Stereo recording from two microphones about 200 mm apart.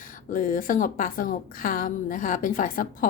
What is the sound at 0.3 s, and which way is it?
A woman's voice, 40° left (ahead or behind).